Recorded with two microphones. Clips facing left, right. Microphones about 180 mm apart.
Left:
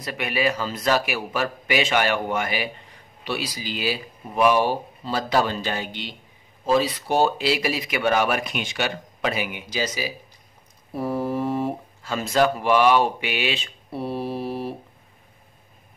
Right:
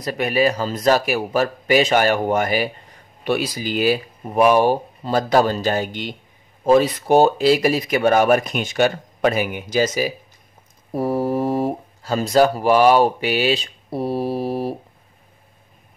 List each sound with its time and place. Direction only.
0.0 s a man's voice: 40° right (ahead or behind)